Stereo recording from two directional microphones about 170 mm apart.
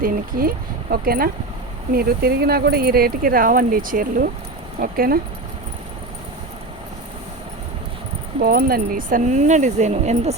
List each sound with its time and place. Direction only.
0.0 s speech: 60° right (ahead or behind)
8.4 s speech: 60° right (ahead or behind); by 10.3 s 40° right (ahead or behind)